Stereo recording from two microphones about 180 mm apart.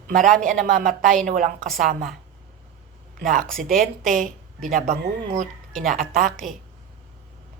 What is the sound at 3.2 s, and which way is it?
Speech, 50° right (ahead or behind).